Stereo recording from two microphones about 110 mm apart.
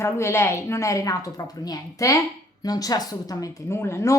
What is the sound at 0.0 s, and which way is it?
A woman's voice, 25° left (ahead or behind).